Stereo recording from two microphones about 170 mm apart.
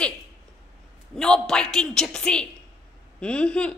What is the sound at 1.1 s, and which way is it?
A woman's voice, 5° left (ahead or behind).